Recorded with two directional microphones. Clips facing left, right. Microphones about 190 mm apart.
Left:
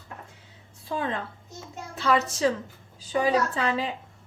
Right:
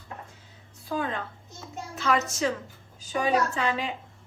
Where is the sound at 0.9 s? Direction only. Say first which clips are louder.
Left 1 dB; 30° left (ahead or behind).